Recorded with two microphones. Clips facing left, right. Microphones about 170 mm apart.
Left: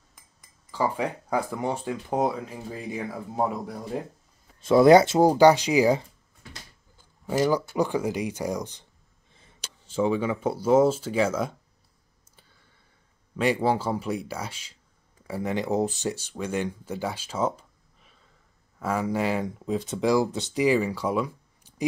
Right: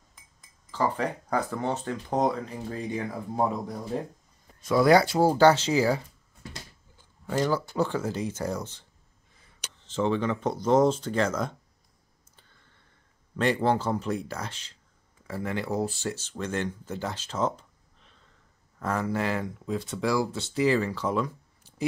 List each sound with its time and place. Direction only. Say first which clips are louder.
0.7 s speech: left 1 dB; 10° left (ahead or behind)
4.6 s speech: left 5 dB; 25° left (ahead or behind)
7.2 s speech: left 3 dB; 15° left (ahead or behind)
9.3 s a sound: left 1 dB; 25° left (ahead or behind)
9.8 s speech: left 2 dB; 10° left (ahead or behind)
12.4 s a sound: left 1 dB; 10° left (ahead or behind)
13.4 s speech: left 1 dB; 10° left (ahead or behind)